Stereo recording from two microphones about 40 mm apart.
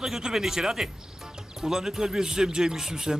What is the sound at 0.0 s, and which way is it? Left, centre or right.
Speech, centre.